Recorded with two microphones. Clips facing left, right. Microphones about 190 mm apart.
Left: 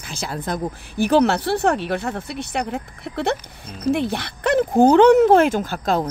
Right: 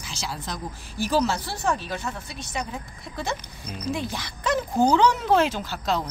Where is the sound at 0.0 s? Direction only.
55° left (ahead or behind).